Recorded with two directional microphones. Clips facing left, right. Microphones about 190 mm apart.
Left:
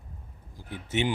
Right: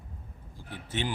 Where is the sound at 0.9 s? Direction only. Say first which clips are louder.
Left 5 dB; 20° left (ahead or behind).